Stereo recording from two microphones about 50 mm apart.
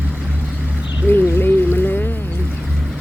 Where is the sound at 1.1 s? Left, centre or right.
Left.